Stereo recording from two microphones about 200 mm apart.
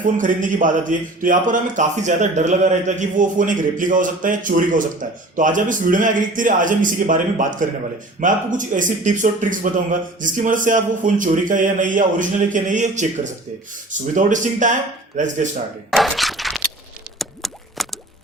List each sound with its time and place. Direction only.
0.0 s speech: 40° right (ahead or behind)
15.9 s a sound: centre (ahead or behind)
17.2 s plop: centre (ahead or behind)